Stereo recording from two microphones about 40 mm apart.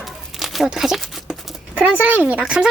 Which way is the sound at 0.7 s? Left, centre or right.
Centre.